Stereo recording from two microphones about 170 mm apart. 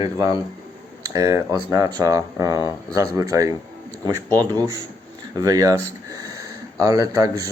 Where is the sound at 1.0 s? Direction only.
20° right (ahead or behind).